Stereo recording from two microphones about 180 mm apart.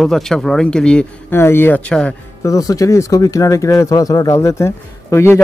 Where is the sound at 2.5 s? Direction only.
20° left (ahead or behind).